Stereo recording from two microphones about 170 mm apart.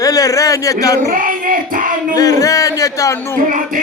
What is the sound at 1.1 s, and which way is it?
Child singing, 55° right (ahead or behind).